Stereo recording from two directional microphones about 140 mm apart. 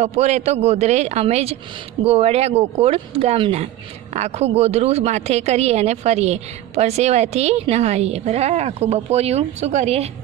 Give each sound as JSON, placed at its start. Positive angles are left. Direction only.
{"t": 0.0, "sound": "a woman's voice", "side_deg": -55}